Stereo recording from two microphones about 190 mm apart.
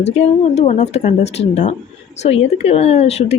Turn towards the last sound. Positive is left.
turn(degrees=35)  # may be behind; listen again after turning